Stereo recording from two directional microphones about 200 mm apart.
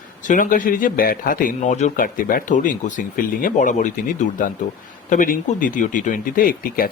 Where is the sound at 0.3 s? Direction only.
40° left (ahead or behind).